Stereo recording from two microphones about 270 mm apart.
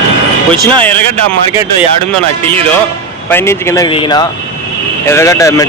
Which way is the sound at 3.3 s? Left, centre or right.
Centre.